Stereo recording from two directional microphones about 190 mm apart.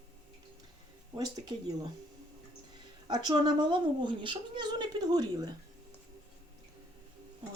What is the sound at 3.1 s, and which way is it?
Speech, 20° right (ahead or behind).